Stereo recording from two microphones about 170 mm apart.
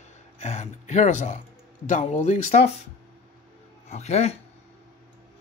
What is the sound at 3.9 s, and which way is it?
Speech, 40° left (ahead or behind).